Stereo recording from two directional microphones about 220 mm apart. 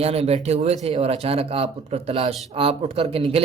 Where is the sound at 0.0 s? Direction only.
25° right (ahead or behind).